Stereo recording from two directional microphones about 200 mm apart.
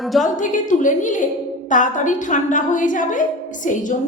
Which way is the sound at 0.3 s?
40° left (ahead or behind).